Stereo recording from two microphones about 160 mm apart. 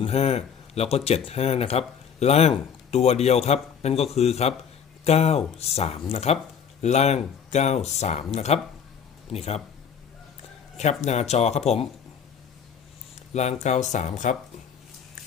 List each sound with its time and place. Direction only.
0.0 s speech: 40° left (ahead or behind)
10.8 s speech: 45° left (ahead or behind)
13.3 s speech: 45° left (ahead or behind)